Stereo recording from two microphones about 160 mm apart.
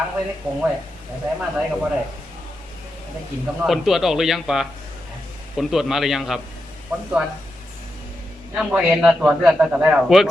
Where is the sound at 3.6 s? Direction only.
Centre (ahead or behind).